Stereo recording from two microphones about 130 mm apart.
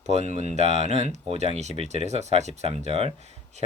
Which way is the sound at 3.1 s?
60° right (ahead or behind).